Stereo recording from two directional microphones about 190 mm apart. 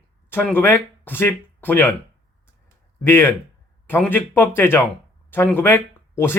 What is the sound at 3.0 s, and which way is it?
Speech, 10° left (ahead or behind).